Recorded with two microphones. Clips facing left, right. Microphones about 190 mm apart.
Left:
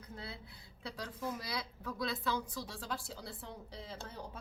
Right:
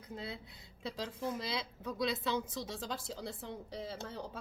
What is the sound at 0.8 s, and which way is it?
A woman's voice, 25° right (ahead or behind).